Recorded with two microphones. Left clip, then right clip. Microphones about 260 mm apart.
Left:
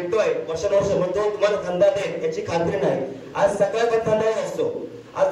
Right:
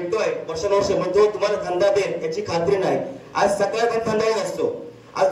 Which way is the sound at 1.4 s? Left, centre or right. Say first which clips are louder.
Left 1 dB; right.